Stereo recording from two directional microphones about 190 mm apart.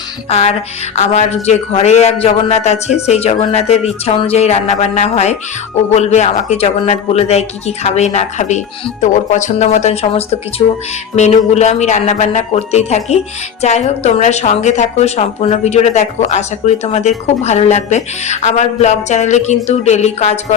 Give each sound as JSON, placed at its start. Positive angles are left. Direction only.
{"t": 0.3, "sound": "a woman's voice", "side_deg": 35}